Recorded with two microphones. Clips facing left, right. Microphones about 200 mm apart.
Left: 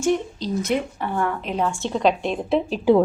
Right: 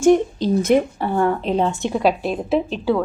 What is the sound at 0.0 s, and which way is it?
Speech, 50° right (ahead or behind).